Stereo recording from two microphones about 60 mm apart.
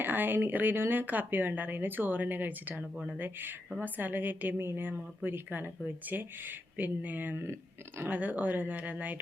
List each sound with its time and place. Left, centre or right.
0.0 s speech: right
4.5 s speech: right